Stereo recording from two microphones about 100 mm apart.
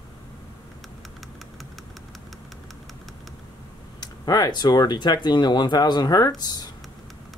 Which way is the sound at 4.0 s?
40° left (ahead or behind).